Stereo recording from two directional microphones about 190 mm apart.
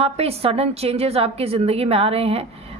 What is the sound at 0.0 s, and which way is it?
Speech, 30° right (ahead or behind).